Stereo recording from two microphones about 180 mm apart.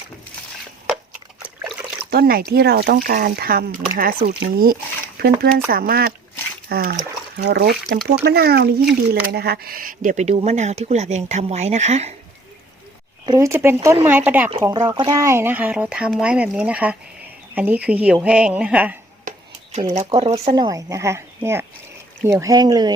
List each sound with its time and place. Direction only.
2.0 s speech: 60° right (ahead or behind); by 12.1 s 35° right (ahead or behind)
13.2 s speech: 20° right (ahead or behind)
14.6 s speech: 20° right (ahead or behind)
19.9 s speech: 40° right (ahead or behind); by 22.9 s 25° right (ahead or behind)